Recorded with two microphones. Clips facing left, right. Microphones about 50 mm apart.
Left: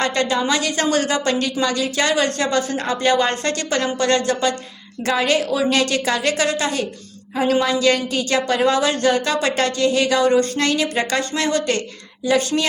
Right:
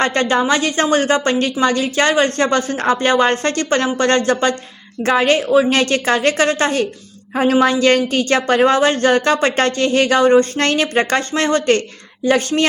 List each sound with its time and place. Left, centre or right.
0.0 s speech: right